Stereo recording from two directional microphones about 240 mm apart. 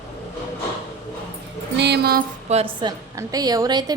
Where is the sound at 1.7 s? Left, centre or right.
Right.